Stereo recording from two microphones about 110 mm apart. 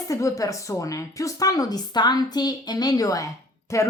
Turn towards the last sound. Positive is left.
turn(degrees=30)  # may be behind; listen again after turning